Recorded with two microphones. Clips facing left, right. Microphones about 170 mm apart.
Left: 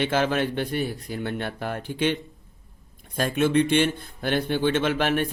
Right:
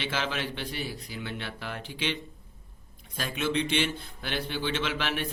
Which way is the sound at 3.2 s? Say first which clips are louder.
Left 8 dB; 50° left (ahead or behind).